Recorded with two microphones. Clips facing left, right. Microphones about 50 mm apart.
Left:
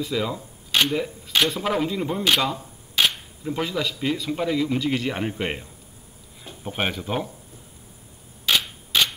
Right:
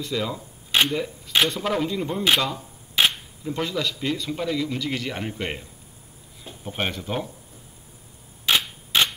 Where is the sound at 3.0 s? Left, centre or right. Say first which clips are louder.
Right 1 dB; centre.